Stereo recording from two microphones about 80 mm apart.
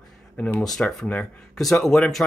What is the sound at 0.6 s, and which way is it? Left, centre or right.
Speech, centre.